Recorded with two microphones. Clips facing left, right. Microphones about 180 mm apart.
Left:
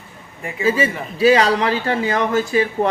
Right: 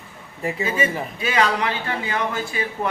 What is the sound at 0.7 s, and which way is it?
Speech, 35° left (ahead or behind).